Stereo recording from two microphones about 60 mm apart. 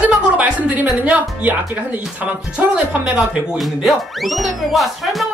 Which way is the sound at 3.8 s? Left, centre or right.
Centre.